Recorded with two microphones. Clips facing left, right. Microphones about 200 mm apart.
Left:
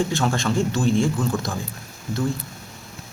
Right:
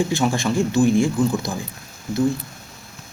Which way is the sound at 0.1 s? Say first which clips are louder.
Right 2 dB; 15° right (ahead or behind).